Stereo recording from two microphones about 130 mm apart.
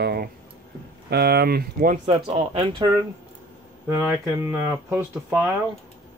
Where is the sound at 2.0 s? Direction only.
50° right (ahead or behind).